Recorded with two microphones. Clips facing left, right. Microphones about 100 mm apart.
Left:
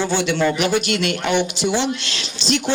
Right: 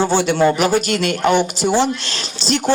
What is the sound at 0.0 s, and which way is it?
Speech, 40° right (ahead or behind).